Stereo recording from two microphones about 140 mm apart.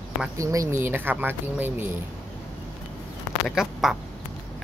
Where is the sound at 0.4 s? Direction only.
25° right (ahead or behind).